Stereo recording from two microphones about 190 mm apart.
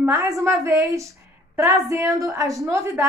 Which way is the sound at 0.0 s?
15° right (ahead or behind).